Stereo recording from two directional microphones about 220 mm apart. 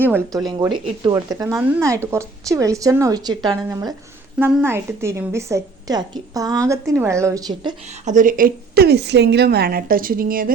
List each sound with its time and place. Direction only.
0.0 s a woman's voice: 10° right (ahead or behind)
8.0 s a woman's voice: 35° right (ahead or behind)